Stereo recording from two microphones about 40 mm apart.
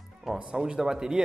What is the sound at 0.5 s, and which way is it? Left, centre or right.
Speech, centre.